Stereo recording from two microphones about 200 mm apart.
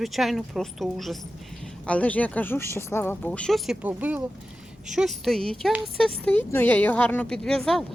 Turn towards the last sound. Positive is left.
turn(degrees=0)  # may be behind; listen again after turning